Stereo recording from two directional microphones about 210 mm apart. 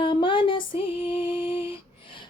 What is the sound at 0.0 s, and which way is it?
Female singing, 25° left (ahead or behind).